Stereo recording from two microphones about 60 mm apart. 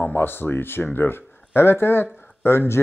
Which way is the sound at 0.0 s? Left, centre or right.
Left.